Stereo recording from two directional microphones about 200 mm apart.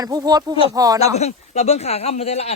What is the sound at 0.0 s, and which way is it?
Speech, 20° right (ahead or behind).